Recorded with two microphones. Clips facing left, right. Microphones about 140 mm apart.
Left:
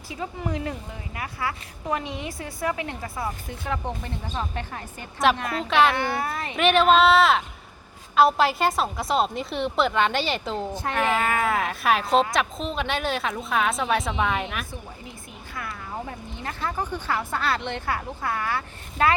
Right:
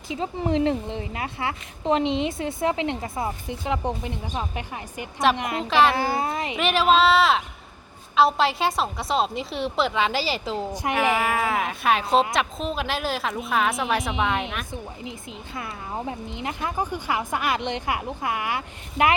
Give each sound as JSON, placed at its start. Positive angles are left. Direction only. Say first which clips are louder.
{"t": 0.1, "sound": "a woman's voice", "louder": "right 5 dB", "side_deg": -25}
{"t": 5.6, "sound": "a woman's voice", "louder": "right 1 dB", "side_deg": 0}
{"t": 6.0, "sound": "a woman's voice", "louder": "right 2 dB", "side_deg": -25}
{"t": 6.6, "sound": "a woman's voice", "louder": "left 2 dB", "side_deg": 0}
{"t": 10.7, "sound": "speech", "louder": "right 3 dB", "side_deg": -15}
{"t": 11.2, "sound": "a woman's voice", "louder": "even", "side_deg": 0}
{"t": 14.1, "sound": "speech", "louder": "even", "side_deg": -15}
{"t": 15.5, "sound": "speech", "louder": "right 1 dB", "side_deg": -20}